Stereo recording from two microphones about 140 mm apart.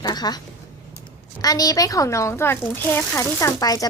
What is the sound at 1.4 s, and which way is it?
Speech, 25° left (ahead or behind).